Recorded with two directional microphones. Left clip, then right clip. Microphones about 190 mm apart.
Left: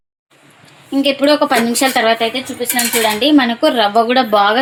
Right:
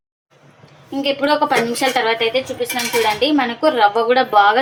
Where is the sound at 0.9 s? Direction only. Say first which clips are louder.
Left 4 dB; 45° left (ahead or behind).